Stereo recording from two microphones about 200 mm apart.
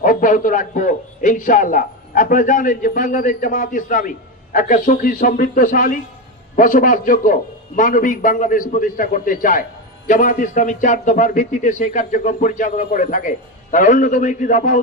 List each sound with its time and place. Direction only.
0.0 s a man's voice: 40° left (ahead or behind)